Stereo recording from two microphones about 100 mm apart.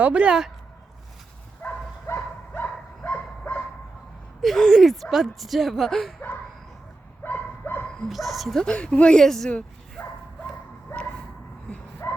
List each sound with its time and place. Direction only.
0.0 s speech: 10° right (ahead or behind)
1.6 s dog: 20° left (ahead or behind)
4.4 s speech: centre (ahead or behind)
7.3 s dog: 15° left (ahead or behind)
8.0 s speech: centre (ahead or behind)
10.0 s dog: 10° left (ahead or behind)
12.0 s music: 30° left (ahead or behind)